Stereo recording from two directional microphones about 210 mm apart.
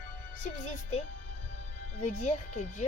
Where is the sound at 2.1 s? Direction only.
35° left (ahead or behind).